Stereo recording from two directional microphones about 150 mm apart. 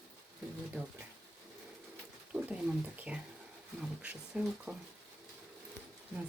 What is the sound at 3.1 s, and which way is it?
Speech, 10° right (ahead or behind).